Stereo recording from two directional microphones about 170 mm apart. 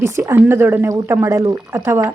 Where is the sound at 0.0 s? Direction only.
15° right (ahead or behind).